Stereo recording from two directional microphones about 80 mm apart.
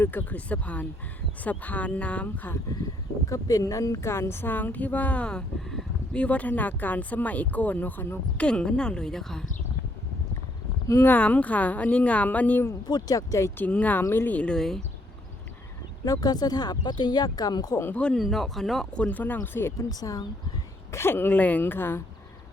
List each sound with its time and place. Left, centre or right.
0.0 s speech: left
3.2 s speech: left
8.4 s a woman's voice: centre
10.8 s speech: left
11.1 s speech: centre
12.9 s speech: left
13.6 s speech: centre
14.0 s a woman's voice: left; by 14.8 s centre
16.0 s speech: left
17.9 s speech: centre
18.9 s speech: centre
19.9 s speech: left
20.9 s speech: left